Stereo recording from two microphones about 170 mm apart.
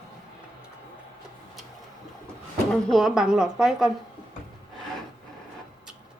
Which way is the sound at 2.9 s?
Centre (ahead or behind).